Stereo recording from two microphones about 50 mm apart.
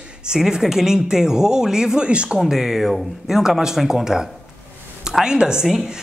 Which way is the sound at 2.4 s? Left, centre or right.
Centre.